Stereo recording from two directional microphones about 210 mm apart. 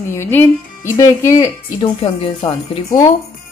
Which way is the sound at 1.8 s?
25° left (ahead or behind).